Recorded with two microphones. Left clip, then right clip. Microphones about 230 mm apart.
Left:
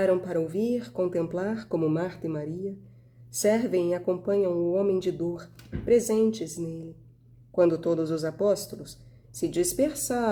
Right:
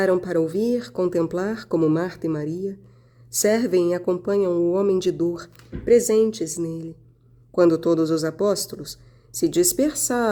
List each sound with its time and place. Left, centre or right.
0.0 s a man's voice: right